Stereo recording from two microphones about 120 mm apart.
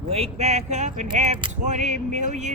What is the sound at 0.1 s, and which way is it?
Speech, 65° right (ahead or behind).